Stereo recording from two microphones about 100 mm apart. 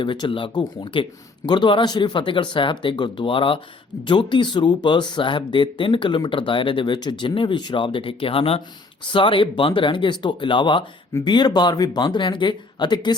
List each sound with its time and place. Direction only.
0.0 s speech: 55° left (ahead or behind); by 8.6 s 70° left (ahead or behind)
9.1 s speech: 60° left (ahead or behind)